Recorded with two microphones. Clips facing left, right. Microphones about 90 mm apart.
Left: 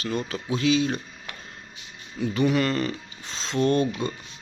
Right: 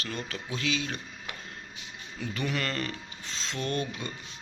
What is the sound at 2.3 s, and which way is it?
Speech, 15° left (ahead or behind).